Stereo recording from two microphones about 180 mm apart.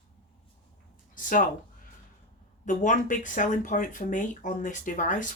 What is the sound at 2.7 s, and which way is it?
Speech, 45° left (ahead or behind).